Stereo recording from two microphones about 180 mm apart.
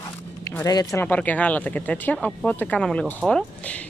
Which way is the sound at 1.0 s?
10° left (ahead or behind).